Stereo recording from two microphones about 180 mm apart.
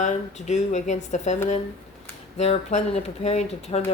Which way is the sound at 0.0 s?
40° left (ahead or behind).